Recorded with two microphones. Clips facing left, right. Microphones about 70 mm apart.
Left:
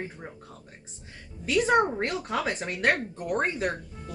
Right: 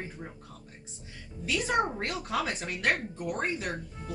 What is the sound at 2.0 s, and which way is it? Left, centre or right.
Speech, left.